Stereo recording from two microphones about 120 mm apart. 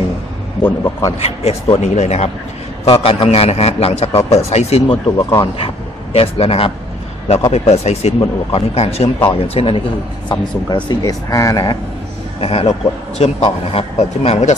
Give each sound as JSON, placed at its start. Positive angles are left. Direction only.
{"t": 0.6, "sound": "a man's voice", "side_deg": 20}
{"t": 1.2, "sound": "a man's voice", "side_deg": 60}
{"t": 2.8, "sound": "a man's voice", "side_deg": 50}
{"t": 10.7, "sound": "speech", "side_deg": 35}
{"t": 12.4, "sound": "a man's voice", "side_deg": 55}